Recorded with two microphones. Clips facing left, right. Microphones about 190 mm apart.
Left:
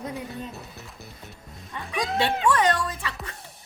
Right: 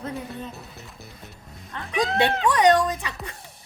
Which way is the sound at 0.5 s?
Centre (ahead or behind).